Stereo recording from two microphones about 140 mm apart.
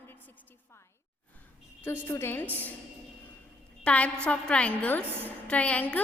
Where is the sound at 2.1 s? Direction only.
15° left (ahead or behind).